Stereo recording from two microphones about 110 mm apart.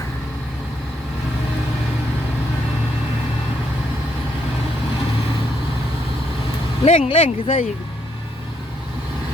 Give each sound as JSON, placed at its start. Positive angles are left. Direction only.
{"t": 6.8, "sound": "speech", "side_deg": 65}